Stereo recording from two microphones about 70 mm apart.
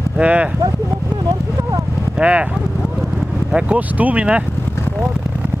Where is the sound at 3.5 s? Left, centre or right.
Right.